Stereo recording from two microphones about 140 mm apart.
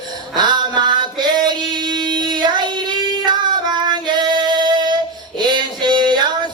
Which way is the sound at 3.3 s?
30° right (ahead or behind).